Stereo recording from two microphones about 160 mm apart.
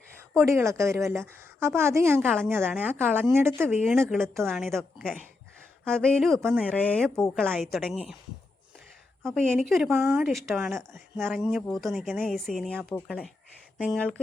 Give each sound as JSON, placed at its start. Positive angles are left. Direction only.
{"t": 0.4, "sound": "a woman's voice", "side_deg": -15}
{"t": 4.5, "sound": "speech", "side_deg": 0}
{"t": 9.2, "sound": "speech", "side_deg": 0}